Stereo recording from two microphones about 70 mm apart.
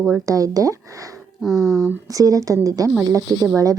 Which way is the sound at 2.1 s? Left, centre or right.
Right.